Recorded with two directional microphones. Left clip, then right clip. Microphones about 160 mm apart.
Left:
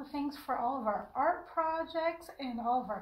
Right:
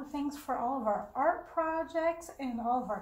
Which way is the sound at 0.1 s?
15° right (ahead or behind).